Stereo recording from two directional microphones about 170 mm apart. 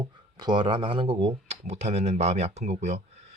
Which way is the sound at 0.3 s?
25° right (ahead or behind).